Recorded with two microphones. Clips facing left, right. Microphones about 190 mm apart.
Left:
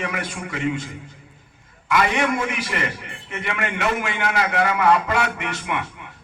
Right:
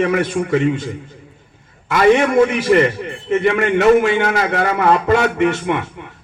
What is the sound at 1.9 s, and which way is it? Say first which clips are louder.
A man's voice: right 8 dB; 40° right (ahead or behind).